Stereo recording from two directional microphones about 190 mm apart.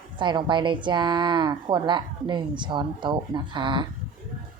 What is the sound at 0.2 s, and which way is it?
A woman's voice, 25° right (ahead or behind).